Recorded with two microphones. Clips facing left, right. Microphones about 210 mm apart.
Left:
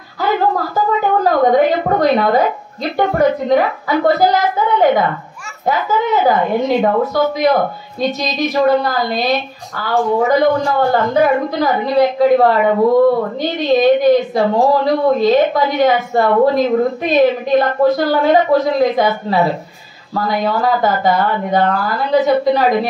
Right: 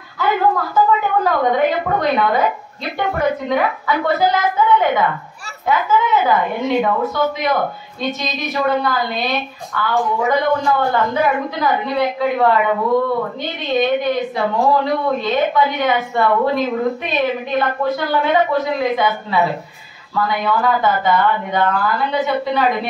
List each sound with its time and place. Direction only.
0.2 s a sound: 40° left (ahead or behind)
1.2 s a woman's voice: 40° left (ahead or behind)
7.3 s a woman's voice: 40° left (ahead or behind)